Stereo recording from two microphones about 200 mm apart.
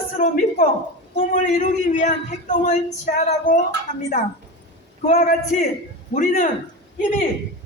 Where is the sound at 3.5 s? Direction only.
40° left (ahead or behind).